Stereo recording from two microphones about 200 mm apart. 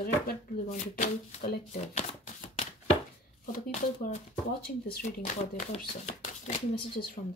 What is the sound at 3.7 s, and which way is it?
Speech, 35° left (ahead or behind).